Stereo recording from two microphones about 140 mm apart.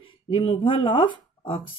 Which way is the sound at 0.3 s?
40° left (ahead or behind).